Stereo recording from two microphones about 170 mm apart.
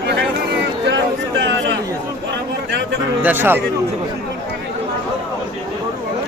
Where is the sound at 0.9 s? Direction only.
90° right.